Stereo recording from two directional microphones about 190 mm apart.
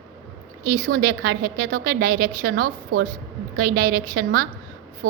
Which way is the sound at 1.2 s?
60° right (ahead or behind).